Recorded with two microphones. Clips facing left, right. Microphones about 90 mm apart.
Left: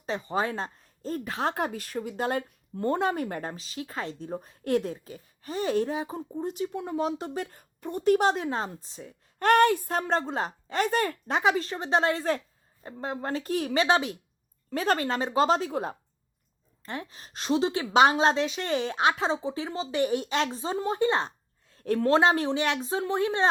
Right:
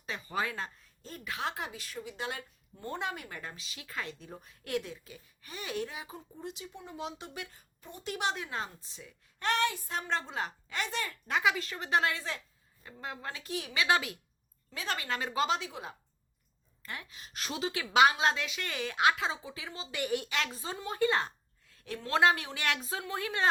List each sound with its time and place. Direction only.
0.0 s speech: 30° left (ahead or behind)
6.7 s speech: 55° left (ahead or behind)
7.2 s speech: 40° left (ahead or behind)
11.3 s speech: 35° left (ahead or behind)
12.1 s speech: 45° left (ahead or behind)
12.8 s speech: 35° left (ahead or behind)
13.8 s speech: 30° left (ahead or behind)
14.7 s speech: 45° left (ahead or behind)
16.8 s speech: 30° left (ahead or behind)
17.4 s speech: 25° left (ahead or behind)
20.7 s a sound: 30° left (ahead or behind)
21.8 s a woman's voice: 45° left (ahead or behind)
22.1 s speech: 25° left (ahead or behind)